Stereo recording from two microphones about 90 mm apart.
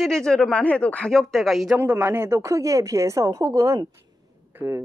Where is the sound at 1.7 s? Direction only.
25° right (ahead or behind).